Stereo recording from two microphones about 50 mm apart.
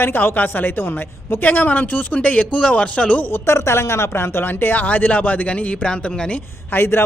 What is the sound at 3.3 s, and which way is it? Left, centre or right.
Speech, left.